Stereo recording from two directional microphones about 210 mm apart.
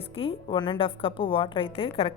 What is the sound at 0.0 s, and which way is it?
A woman's voice, 25° left (ahead or behind).